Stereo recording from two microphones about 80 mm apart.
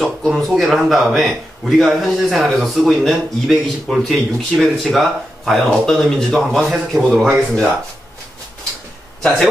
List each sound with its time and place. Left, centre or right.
0.0 s speech: centre